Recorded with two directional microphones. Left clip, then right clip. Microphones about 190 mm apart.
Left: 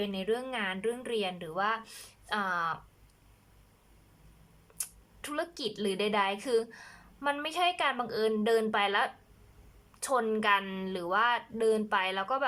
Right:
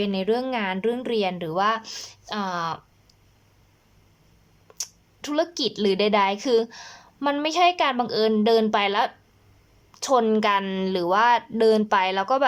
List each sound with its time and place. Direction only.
0.0 s a woman's voice: 25° right (ahead or behind)
4.8 s a woman's voice: 20° right (ahead or behind)